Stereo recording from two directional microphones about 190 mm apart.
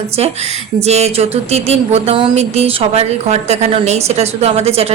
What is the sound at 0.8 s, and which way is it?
A woman's voice, 35° right (ahead or behind).